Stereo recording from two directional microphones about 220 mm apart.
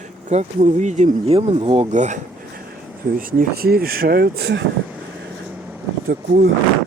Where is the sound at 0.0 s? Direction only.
30° right (ahead or behind); by 4.6 s 50° right (ahead or behind).